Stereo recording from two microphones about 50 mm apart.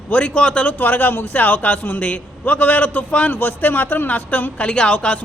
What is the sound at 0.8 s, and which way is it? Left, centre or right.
A woman's voice, left.